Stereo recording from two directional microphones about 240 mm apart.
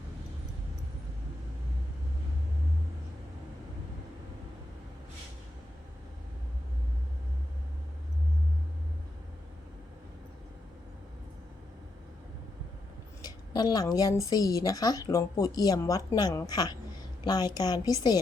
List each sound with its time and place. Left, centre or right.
13.2 s a woman's voice: centre